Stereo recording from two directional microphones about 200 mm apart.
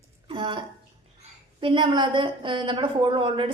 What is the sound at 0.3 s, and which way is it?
Bathtub, 25° right (ahead or behind).